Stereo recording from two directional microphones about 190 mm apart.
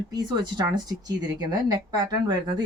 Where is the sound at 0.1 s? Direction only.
20° right (ahead or behind).